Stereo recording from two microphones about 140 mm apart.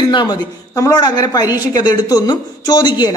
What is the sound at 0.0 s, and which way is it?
A woman's voice, 30° left (ahead or behind).